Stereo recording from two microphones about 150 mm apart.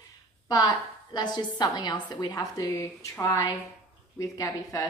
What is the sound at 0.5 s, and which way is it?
A woman's voice, 25° left (ahead or behind).